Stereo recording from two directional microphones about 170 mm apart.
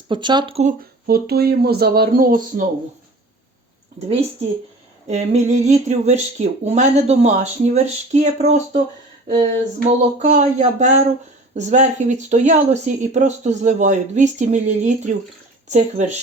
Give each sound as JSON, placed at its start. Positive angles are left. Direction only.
{"t": 0.1, "sound": "speech", "side_deg": -25}
{"t": 5.0, "sound": "speech", "side_deg": -40}
{"t": 9.8, "sound": "speech", "side_deg": -45}